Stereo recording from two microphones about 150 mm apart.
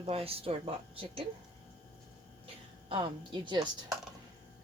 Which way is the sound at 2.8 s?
35° right (ahead or behind).